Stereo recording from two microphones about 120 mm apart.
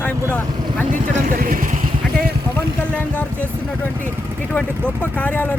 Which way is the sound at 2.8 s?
10° left (ahead or behind).